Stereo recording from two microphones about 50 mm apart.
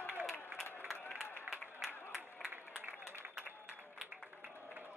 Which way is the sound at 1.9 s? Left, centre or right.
Left.